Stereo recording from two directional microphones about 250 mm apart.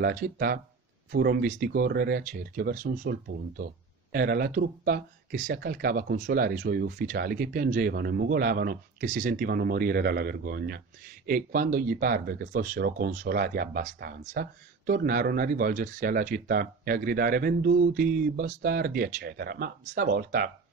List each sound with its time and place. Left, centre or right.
0.0 s speech: right